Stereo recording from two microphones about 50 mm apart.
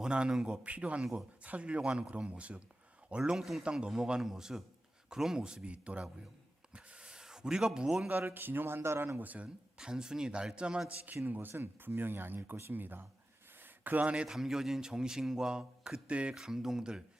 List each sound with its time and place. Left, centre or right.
0.0 s speech: centre
3.3 s speech: centre
3.6 s a man's voice: centre
5.7 s speech: right
6.7 s a sound: centre
8.3 s speech: right
9.1 s speech: right
9.7 s a man's voice: centre
10.8 s speech: right
11.3 s speech: right
14.3 s a man's voice: centre; by 16.3 s right
16.3 s a man's voice: centre